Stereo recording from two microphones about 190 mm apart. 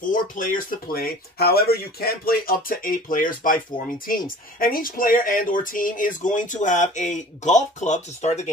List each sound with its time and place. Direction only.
0.1 s speech: 45° left (ahead or behind)